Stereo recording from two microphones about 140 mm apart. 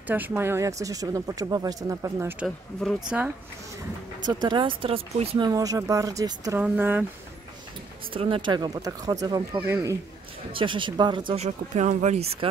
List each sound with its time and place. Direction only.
0.0 s speech: 15° right (ahead or behind)
2.4 s speech: centre (ahead or behind)
4.3 s speech: 30° right (ahead or behind)
5.5 s speech: 25° right (ahead or behind)
6.6 s speech: 15° right (ahead or behind)
8.1 s speech: 40° right (ahead or behind); by 9.9 s 15° right (ahead or behind)
10.5 s speech: 35° right (ahead or behind)
11.3 s speech: 55° right (ahead or behind)